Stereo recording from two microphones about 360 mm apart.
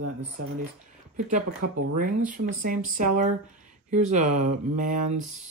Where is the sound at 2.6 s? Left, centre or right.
Right.